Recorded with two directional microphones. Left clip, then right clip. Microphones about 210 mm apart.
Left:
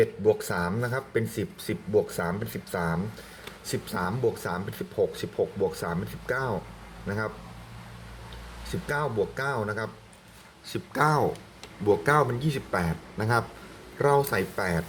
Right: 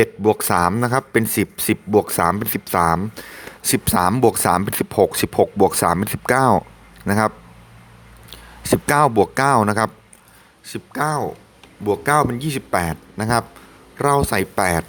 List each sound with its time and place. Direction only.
0.0 s speech: 55° right (ahead or behind)
8.7 s speech: 55° right (ahead or behind)
10.7 s speech: 25° right (ahead or behind)
11.9 s speech: 35° right (ahead or behind); by 14.8 s 50° right (ahead or behind)